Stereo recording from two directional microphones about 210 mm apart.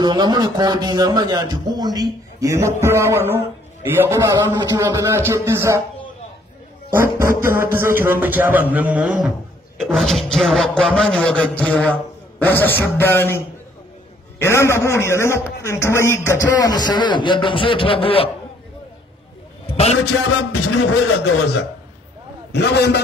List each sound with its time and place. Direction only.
0.0 s a man's voice: 20° right (ahead or behind)
6.9 s a man's voice: 10° right (ahead or behind); by 13.4 s 10° left (ahead or behind)
14.4 s a man's voice: 10° left (ahead or behind)
19.6 s a man's voice: 30° left (ahead or behind)
20.1 s a man's voice: 90° left
22.5 s a man's voice: 50° left (ahead or behind)